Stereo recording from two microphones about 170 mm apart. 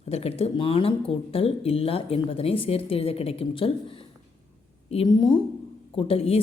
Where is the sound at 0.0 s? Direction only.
35° left (ahead or behind).